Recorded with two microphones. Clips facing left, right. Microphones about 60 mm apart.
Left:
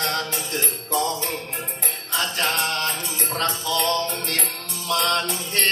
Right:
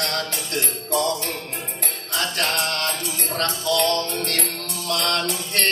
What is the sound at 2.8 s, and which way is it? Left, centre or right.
Mantra, right.